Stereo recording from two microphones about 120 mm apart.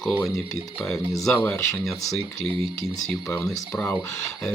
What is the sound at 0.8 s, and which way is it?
Speech, 5° left (ahead or behind).